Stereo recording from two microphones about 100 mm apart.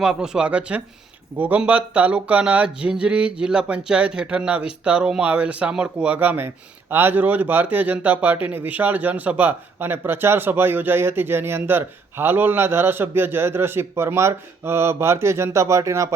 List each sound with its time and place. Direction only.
0.0 s speech: 5° right (ahead or behind); by 16.0 s 30° right (ahead or behind)